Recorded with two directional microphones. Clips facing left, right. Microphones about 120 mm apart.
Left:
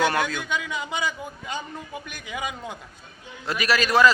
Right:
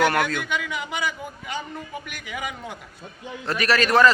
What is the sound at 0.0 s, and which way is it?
A man's voice, 15° left (ahead or behind).